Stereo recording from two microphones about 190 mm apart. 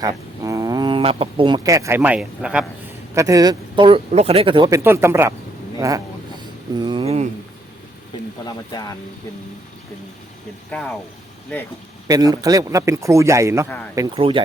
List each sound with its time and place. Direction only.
0.0 s speech: 20° right (ahead or behind)
3.2 s speech: 20° right (ahead or behind)
6.7 s a sound: 25° right (ahead or behind)
8.4 s speech: 20° left (ahead or behind)
10.7 s speech: 5° left (ahead or behind)
12.0 s speech: 20° right (ahead or behind)
14.2 s speech: 30° right (ahead or behind)